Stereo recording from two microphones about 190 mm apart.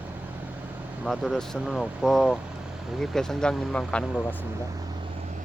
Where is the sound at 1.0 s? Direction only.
Centre (ahead or behind).